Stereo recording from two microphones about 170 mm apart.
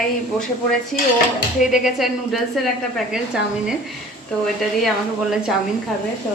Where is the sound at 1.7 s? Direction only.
Centre (ahead or behind).